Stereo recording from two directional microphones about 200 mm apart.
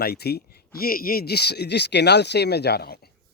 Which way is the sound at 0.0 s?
50° left (ahead or behind).